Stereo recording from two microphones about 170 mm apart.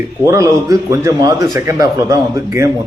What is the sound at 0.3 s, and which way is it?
A man's voice, 20° right (ahead or behind).